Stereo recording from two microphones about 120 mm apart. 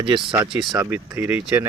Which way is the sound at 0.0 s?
45° right (ahead or behind).